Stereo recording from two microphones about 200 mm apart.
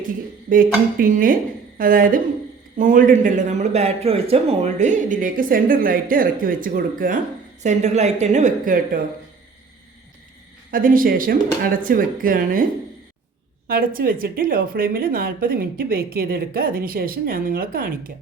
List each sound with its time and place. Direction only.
0.9 s a man's voice: 45° right (ahead or behind)
10.7 s speech: 45° right (ahead or behind)
13.7 s speech: 45° right (ahead or behind)